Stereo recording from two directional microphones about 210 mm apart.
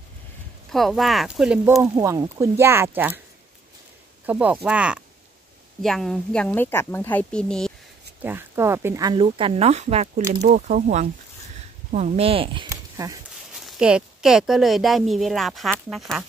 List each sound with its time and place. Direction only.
0.7 s a woman's voice: centre (ahead or behind)
1.8 s speech: 15° right (ahead or behind)
4.3 s a woman's voice: 5° right (ahead or behind)
8.2 s speech: 10° right (ahead or behind)
13.5 s a woman's voice: centre (ahead or behind)